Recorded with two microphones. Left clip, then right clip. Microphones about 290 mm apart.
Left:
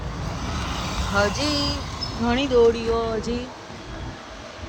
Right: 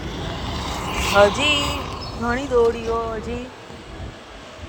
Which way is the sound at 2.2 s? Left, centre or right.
Centre.